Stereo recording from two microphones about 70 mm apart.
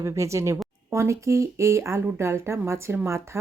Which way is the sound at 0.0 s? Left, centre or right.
Right.